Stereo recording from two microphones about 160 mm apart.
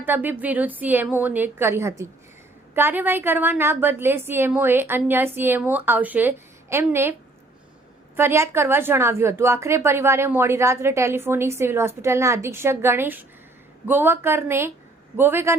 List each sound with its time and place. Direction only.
0.0 s a woman's voice: 10° right (ahead or behind)